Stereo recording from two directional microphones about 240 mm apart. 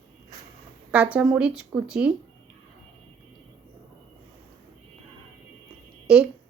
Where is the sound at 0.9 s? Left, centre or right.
Centre.